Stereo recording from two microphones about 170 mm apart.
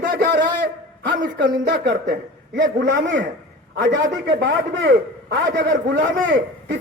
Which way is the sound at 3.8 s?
90° right.